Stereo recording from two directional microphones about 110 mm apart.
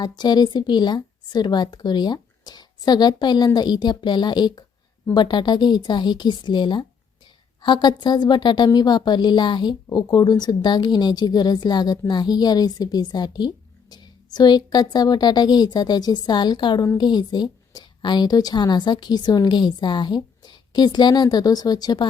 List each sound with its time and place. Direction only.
0.0 s a woman's voice: 40° left (ahead or behind)